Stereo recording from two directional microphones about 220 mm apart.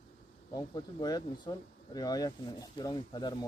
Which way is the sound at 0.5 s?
20° left (ahead or behind).